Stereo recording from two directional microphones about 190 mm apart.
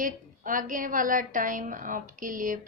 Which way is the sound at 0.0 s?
45° right (ahead or behind).